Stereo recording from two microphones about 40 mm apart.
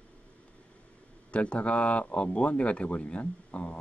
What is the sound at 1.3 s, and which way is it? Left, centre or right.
A man's voice, left.